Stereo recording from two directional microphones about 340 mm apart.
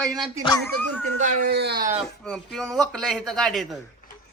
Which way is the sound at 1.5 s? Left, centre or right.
Right.